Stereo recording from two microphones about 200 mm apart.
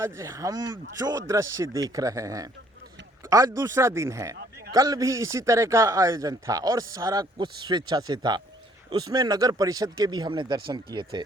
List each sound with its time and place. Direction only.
0.0 s speech: 15° right (ahead or behind)